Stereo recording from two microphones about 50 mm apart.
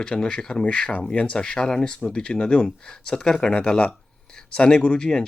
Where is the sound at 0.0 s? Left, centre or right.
Centre.